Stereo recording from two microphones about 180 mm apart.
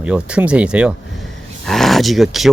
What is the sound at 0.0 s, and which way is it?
Speech, 5° right (ahead or behind).